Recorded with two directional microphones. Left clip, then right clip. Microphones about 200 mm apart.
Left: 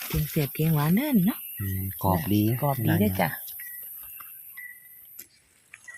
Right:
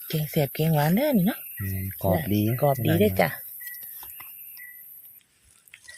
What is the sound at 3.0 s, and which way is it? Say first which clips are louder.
Speech: right 6 dB; 40° right (ahead or behind).